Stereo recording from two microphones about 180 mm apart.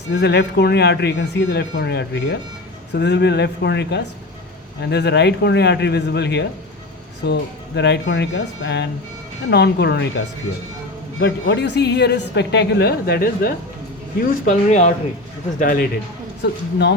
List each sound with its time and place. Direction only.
0.1 s a woman's voice: 70° left (ahead or behind)
7.8 s a woman's voice: 75° left (ahead or behind); by 13.5 s 55° left (ahead or behind)
14.2 s speech: 45° left (ahead or behind)
15.5 s a man's voice: 50° left (ahead or behind)
16.4 s a woman's voice: 70° left (ahead or behind)